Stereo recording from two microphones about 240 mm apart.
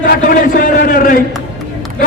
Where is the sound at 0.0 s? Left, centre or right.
Left.